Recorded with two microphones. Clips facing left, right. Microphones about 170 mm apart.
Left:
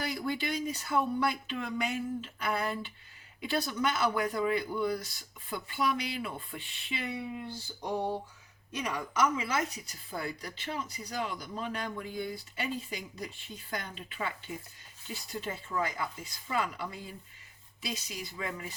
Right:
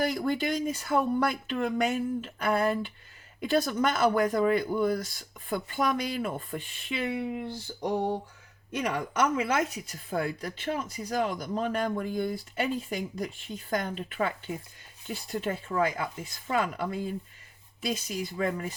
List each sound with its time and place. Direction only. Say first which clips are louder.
0.0 s speech: right 6 dB; 50° right (ahead or behind)
8.7 s speech: right 4 dB; 60° right (ahead or behind)